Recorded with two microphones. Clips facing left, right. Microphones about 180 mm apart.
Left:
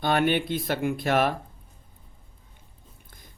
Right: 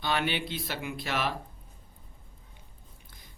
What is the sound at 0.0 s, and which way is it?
Speech, 50° left (ahead or behind).